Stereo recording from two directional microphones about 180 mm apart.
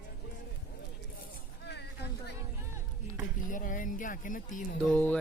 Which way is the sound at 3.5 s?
50° left (ahead or behind).